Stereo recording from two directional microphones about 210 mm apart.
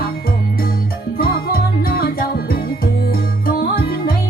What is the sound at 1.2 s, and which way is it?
Music, 45° left (ahead or behind).